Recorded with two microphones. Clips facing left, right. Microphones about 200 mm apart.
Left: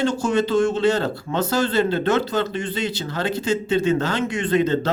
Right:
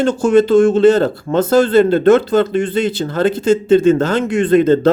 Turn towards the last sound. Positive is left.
turn(degrees=-50)  # may be behind; listen again after turning